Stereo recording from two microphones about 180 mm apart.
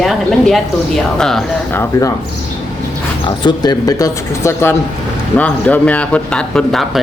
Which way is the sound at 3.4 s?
25° left (ahead or behind).